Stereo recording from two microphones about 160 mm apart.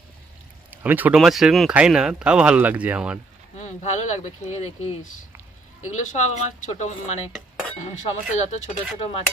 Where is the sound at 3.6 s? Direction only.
45° left (ahead or behind).